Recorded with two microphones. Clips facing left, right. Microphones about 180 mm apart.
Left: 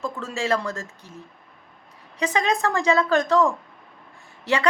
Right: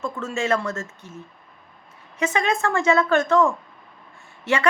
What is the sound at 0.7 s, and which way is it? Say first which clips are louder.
Speech: right 2 dB; 35° left (ahead or behind).